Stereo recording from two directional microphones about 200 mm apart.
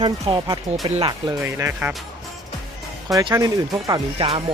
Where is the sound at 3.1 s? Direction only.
15° right (ahead or behind).